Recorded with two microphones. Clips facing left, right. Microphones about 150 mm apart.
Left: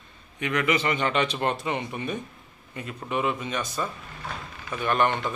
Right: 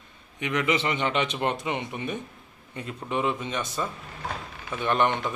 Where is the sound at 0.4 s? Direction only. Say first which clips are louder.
Left 1 dB; 20° right (ahead or behind).